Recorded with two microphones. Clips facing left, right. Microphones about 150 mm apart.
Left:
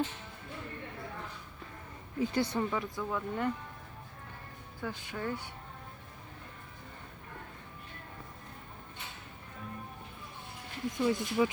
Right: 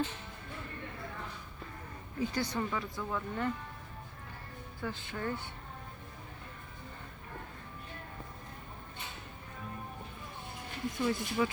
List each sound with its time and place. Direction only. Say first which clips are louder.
2.1 s speech: left 3 dB; 25° left (ahead or behind)
2.6 s speech: left 2 dB; 15° left (ahead or behind)
4.8 s speech: even; 10° left (ahead or behind)
10.9 s speech: left 3 dB; 15° left (ahead or behind)